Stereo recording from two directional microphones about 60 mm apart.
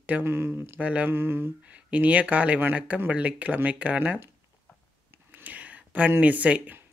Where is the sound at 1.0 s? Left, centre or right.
Right.